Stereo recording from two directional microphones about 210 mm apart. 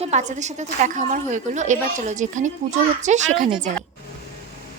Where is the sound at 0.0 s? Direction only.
35° right (ahead or behind).